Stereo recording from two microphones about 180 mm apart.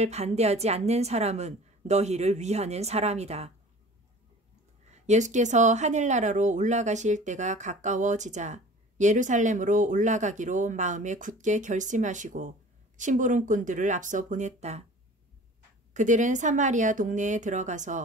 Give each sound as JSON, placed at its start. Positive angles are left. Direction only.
{"t": 0.0, "sound": "a woman's voice", "side_deg": -35}
{"t": 4.9, "sound": "speech", "side_deg": -40}
{"t": 15.9, "sound": "speech", "side_deg": -45}